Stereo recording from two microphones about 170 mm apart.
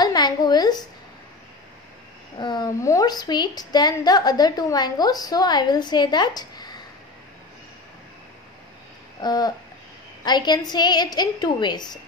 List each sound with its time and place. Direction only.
0.0 s a sound: 25° left (ahead or behind)
2.3 s a woman's voice: 25° left (ahead or behind)
9.2 s a woman's voice: 25° left (ahead or behind)